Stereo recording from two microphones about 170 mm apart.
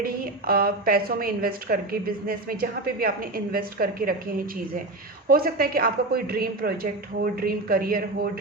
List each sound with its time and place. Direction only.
0.0 s a woman's voice: 60° right (ahead or behind)